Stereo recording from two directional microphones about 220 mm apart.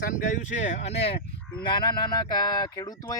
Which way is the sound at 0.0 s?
35° left (ahead or behind).